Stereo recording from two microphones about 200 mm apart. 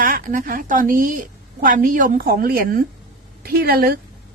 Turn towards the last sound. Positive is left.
turn(degrees=-50)  # may be behind; listen again after turning